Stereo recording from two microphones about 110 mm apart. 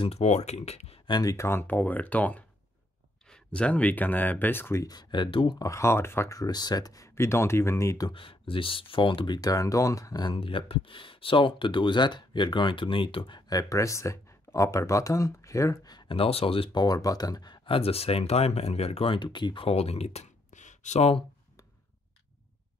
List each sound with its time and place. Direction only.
0.0 s speech: 75° left (ahead or behind)
1.0 s speech: 40° left (ahead or behind)
1.3 s speech: 25° left (ahead or behind)
4.8 s speech: 40° left (ahead or behind)
5.6 s speech: 25° left (ahead or behind)
8.1 s speech: 55° left (ahead or behind); by 10.2 s 30° left (ahead or behind)
10.2 s speech: 55° left (ahead or behind)
13.5 s speech: 30° left (ahead or behind)
16.2 s speech: 60° left (ahead or behind)
16.7 s speech: 35° left (ahead or behind)
17.6 s speech: 60° left (ahead or behind)
19.1 s speech: 45° left (ahead or behind); by 21.2 s 80° left